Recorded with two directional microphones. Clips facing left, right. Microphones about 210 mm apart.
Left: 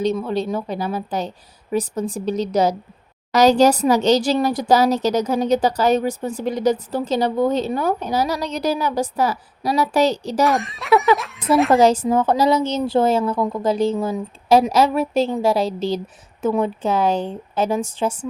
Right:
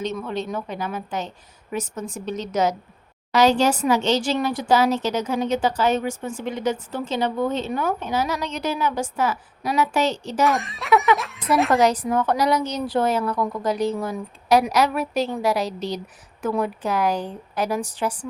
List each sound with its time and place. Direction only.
0.0 s speech: 35° left (ahead or behind)
10.4 s speech: centre (ahead or behind)
11.8 s speech: 30° left (ahead or behind)